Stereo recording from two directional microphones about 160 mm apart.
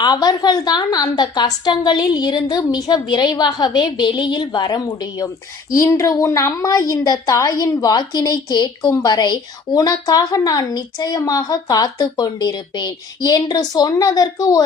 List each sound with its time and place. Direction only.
0.0 s a woman's voice: 25° left (ahead or behind)